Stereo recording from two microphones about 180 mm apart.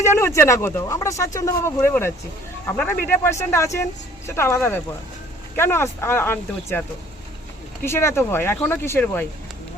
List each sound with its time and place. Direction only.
0.0 s speech: 15° left (ahead or behind)